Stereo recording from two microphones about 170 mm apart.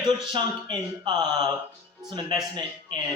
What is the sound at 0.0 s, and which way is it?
A man's voice, 25° right (ahead or behind).